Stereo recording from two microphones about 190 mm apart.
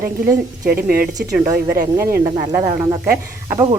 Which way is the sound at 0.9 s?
50° right (ahead or behind).